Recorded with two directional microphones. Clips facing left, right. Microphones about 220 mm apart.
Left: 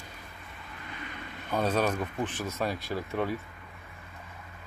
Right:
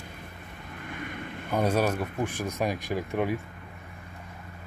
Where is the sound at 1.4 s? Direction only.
15° right (ahead or behind).